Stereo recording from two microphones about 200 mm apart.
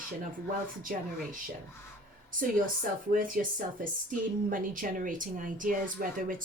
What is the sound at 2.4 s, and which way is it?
Speech, 45° right (ahead or behind).